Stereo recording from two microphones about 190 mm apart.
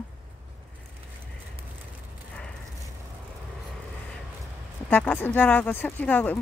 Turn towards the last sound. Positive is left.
turn(degrees=10)  # may be behind; listen again after turning